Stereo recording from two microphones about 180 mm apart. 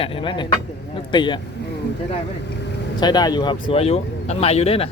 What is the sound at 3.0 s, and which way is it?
Speech, 25° left (ahead or behind).